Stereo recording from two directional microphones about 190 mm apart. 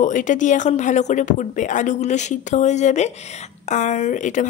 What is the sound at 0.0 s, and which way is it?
Speech, 40° left (ahead or behind).